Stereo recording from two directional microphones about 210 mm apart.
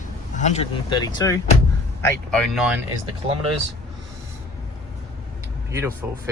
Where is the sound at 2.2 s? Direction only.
Centre (ahead or behind).